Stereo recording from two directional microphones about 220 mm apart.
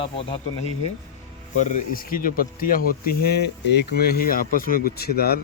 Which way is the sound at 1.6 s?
35° left (ahead or behind).